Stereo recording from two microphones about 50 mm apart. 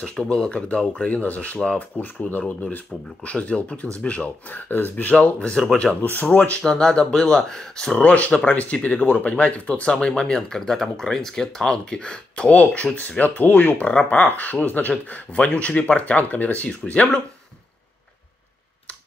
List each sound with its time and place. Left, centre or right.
0.0 s speech: centre; by 1.6 s left
1.6 s speech: left
2.0 s speech: left
5.1 s speech: left
6.0 s speech: left
6.6 s speech: centre
8.0 s speech: left